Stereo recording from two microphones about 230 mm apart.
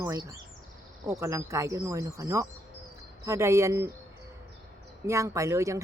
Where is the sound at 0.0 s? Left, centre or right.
Centre.